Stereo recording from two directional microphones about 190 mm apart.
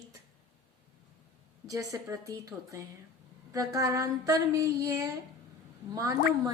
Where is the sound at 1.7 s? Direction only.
15° right (ahead or behind).